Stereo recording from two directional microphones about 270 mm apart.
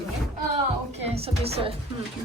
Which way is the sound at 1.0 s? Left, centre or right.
Right.